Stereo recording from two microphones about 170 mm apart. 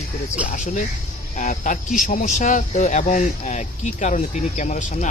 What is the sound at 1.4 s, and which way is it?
Speech, 50° left (ahead or behind).